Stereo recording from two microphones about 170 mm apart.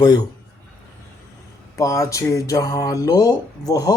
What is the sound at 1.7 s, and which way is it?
Speech, 20° left (ahead or behind).